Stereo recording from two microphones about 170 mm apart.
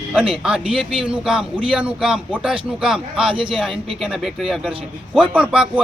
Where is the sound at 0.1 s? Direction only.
5° right (ahead or behind).